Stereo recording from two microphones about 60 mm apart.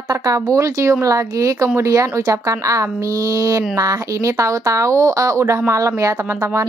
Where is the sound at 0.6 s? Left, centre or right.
Right.